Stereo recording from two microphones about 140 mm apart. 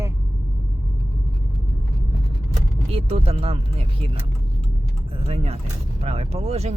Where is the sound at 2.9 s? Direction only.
50° right (ahead or behind).